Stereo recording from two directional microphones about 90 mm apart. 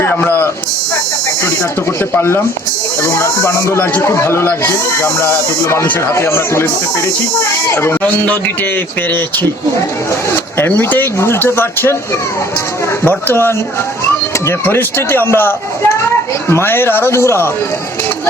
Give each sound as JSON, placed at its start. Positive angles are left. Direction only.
{"t": 0.0, "sound": "a sound", "side_deg": 25}
{"t": 2.0, "sound": "a man's voice", "side_deg": 30}
{"t": 13.1, "sound": "a man's voice", "side_deg": 25}
{"t": 14.6, "sound": "a man's voice", "side_deg": 25}